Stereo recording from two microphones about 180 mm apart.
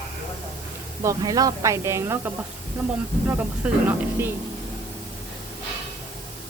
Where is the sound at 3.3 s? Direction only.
10° right (ahead or behind).